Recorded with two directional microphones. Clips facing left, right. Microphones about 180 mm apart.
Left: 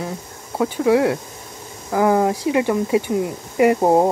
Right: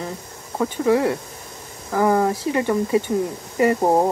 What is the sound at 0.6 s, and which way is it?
Speech, 10° left (ahead or behind).